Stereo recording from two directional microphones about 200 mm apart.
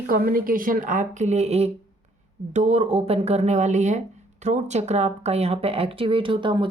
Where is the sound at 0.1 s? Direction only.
45° right (ahead or behind).